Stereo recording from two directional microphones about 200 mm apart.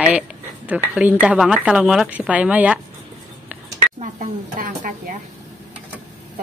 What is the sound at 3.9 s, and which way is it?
Speech, 40° right (ahead or behind).